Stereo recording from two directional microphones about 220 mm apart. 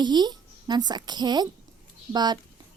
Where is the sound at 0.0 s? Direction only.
20° right (ahead or behind).